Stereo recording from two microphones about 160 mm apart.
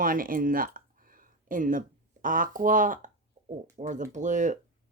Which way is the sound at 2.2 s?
55° right (ahead or behind).